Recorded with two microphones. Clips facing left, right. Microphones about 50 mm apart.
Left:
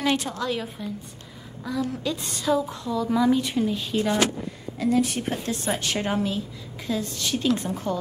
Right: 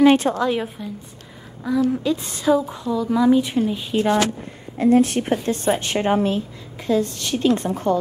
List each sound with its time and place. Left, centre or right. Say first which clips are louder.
0.1 s a woman's voice: right 8 dB; right
1.6 s speech: right 8 dB; centre
4.7 s a woman's voice: right 7 dB; right
5.2 s a woman's voice: right 7 dB; right
7.2 s a woman's voice: right 2 dB; right
7.6 s a woman's voice: right 7 dB; right